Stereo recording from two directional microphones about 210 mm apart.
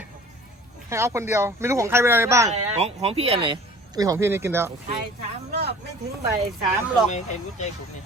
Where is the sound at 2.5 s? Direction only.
30° right (ahead or behind); by 4.7 s 10° right (ahead or behind).